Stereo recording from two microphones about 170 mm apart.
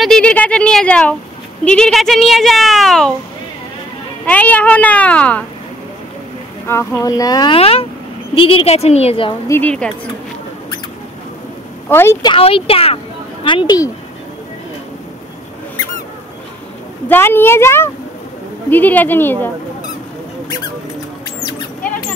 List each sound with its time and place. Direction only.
0.0 s a child's voice: 5° left (ahead or behind)
4.3 s speech: 10° left (ahead or behind)
6.7 s speech: 15° left (ahead or behind)
7.5 s a woman's voice: 35° left (ahead or behind)
9.5 s speech: 10° left (ahead or behind)
11.9 s speech: 15° left (ahead or behind)
12.3 s speech: 35° left (ahead or behind)
17.1 s speech: 10° left (ahead or behind)